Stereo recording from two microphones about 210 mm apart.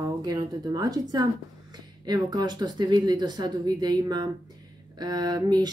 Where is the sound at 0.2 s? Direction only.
20° right (ahead or behind).